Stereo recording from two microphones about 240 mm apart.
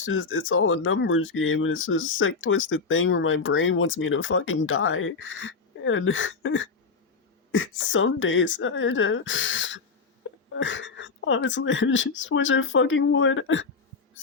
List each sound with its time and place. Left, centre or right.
0.0 s speech: left